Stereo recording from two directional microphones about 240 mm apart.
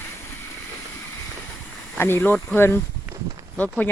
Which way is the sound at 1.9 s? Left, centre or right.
Centre.